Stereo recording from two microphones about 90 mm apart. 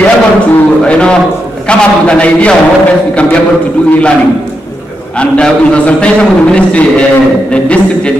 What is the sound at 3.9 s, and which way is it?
A man's voice, 10° left (ahead or behind).